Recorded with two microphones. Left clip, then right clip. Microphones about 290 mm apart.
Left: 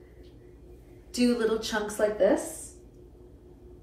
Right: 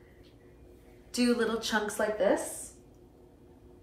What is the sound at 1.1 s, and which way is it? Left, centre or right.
Speech, centre.